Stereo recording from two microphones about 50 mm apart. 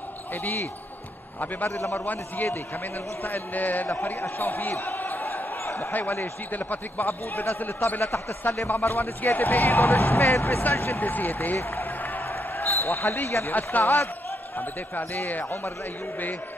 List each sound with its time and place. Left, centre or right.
0.3 s speech: left
2.0 s a man's voice: left
8.5 s speech: left
10.3 s speech: left
11.0 s speech: left
11.8 s a sound: left
12.3 s basketball bounce: left
13.5 s speech: left